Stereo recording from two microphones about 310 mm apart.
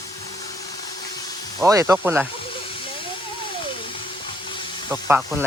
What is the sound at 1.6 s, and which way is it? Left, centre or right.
Speech, centre.